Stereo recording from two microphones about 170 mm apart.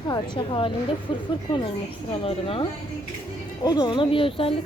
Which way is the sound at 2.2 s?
35° left (ahead or behind).